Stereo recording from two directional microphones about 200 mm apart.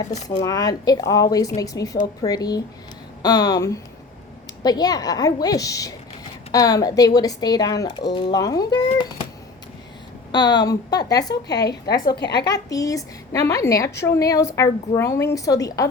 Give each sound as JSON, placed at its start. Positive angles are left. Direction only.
{"t": 0.3, "sound": "a woman's voice", "side_deg": 20}
{"t": 10.3, "sound": "a woman's voice", "side_deg": 20}